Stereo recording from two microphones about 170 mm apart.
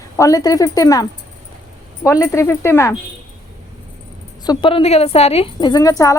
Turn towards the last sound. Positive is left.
turn(degrees=20)  # may be behind; listen again after turning